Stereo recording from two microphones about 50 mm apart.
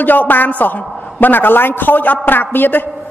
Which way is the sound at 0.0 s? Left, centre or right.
Left.